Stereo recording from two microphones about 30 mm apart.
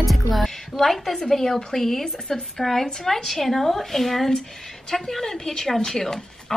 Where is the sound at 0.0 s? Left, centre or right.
Centre.